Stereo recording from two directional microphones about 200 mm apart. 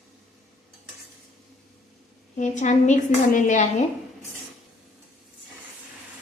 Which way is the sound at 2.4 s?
35° left (ahead or behind).